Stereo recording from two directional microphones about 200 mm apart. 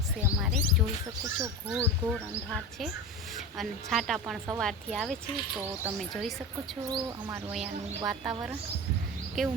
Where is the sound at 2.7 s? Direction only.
Centre (ahead or behind).